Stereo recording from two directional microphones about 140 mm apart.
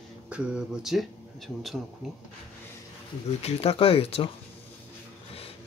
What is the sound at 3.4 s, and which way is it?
Speech, 50° left (ahead or behind).